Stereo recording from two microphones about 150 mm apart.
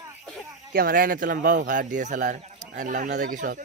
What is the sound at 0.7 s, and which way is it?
Speech, 75° right (ahead or behind).